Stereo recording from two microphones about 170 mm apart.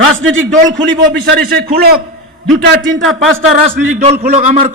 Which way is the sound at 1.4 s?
60° right (ahead or behind).